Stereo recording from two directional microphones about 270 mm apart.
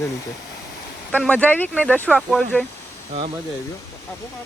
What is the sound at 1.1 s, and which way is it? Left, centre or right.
Speech, centre.